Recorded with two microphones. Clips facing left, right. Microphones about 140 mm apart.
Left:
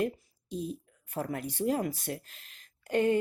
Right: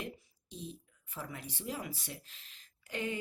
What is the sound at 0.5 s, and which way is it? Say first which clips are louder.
Speech: left 10 dB; 50° left (ahead or behind).